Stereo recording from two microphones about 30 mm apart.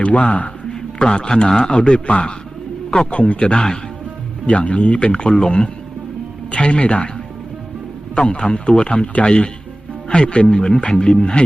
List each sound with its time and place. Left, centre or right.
0.0 s speech: left
0.9 s a man's voice: left
3.3 s a man's voice: left
4.4 s a man's voice: left
6.5 s a man's voice: left
8.1 s a man's voice: left